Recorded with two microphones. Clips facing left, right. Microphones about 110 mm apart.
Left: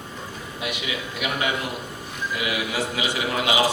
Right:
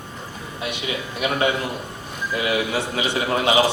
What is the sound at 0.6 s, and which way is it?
A woman's voice, 30° right (ahead or behind).